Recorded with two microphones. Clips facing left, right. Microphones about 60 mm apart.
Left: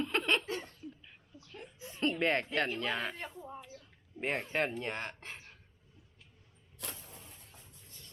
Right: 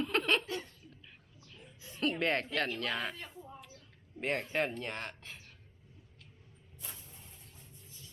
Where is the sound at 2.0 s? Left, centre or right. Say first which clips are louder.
Left 1 dB; centre.